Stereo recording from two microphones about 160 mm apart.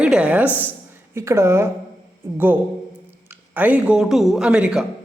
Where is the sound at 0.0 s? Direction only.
5° right (ahead or behind).